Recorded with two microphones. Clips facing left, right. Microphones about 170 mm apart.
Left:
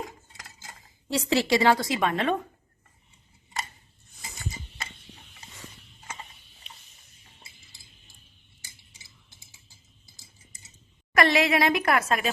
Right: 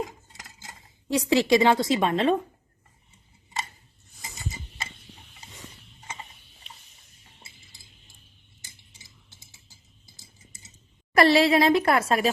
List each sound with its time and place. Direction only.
1.0 s a woman's voice: 15° right (ahead or behind)
11.1 s speech: 35° right (ahead or behind)